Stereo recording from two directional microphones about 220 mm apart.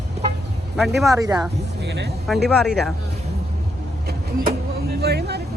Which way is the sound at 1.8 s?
50° right (ahead or behind).